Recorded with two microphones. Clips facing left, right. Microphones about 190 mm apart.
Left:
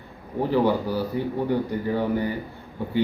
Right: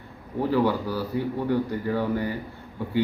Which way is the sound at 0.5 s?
20° left (ahead or behind).